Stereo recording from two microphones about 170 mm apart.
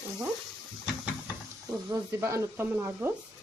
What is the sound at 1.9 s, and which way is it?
Speech, 15° right (ahead or behind).